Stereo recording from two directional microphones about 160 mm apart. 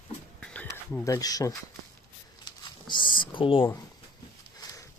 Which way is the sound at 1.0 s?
20° left (ahead or behind).